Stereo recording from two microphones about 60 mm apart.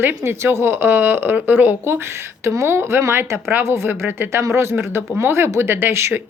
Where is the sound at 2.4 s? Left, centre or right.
Right.